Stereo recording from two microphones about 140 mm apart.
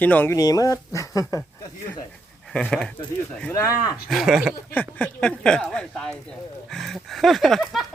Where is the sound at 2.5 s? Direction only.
5° left (ahead or behind).